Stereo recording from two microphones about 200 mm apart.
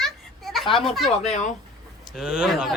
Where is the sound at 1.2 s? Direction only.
35° left (ahead or behind).